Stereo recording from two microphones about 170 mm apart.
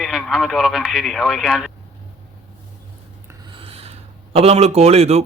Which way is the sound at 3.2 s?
25° right (ahead or behind).